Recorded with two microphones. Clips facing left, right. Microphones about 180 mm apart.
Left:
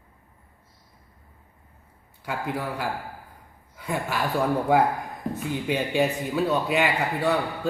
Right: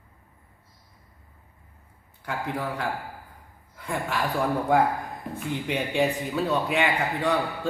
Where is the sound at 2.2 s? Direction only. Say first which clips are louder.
Left 1 dB; 5° left (ahead or behind).